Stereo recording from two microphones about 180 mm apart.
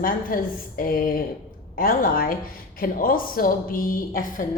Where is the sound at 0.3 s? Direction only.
55° left (ahead or behind).